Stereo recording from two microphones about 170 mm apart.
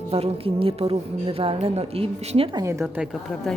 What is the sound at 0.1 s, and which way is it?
A woman's voice, 35° right (ahead or behind).